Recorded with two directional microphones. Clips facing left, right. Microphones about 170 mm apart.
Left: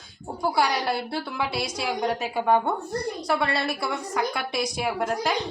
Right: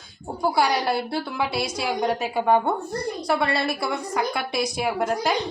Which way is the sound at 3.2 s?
10° right (ahead or behind).